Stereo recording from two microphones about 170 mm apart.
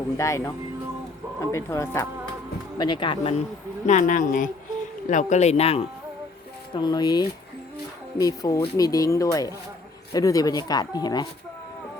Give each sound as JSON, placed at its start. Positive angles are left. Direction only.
{"t": 0.2, "sound": "speech", "side_deg": 20}
{"t": 1.5, "sound": "speech", "side_deg": 15}
{"t": 2.7, "sound": "speech", "side_deg": 25}
{"t": 3.8, "sound": "speech", "side_deg": 50}
{"t": 6.7, "sound": "speech", "side_deg": 25}